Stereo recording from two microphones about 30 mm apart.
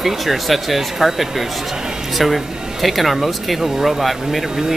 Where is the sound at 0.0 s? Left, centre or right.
Centre.